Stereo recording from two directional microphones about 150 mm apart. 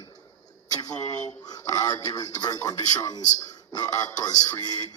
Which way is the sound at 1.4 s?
25° left (ahead or behind).